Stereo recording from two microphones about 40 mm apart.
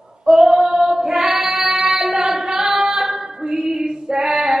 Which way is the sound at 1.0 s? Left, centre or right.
Centre.